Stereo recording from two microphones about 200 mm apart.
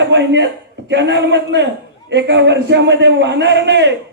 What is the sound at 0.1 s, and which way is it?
A man's voice, 60° right (ahead or behind).